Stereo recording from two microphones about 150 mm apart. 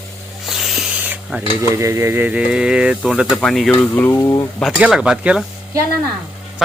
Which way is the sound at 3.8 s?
10° left (ahead or behind).